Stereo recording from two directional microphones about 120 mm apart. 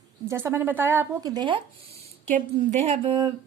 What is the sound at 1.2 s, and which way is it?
Speech, 35° right (ahead or behind).